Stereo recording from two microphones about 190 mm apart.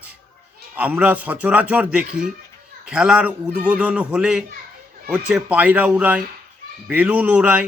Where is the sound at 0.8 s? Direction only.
10° right (ahead or behind).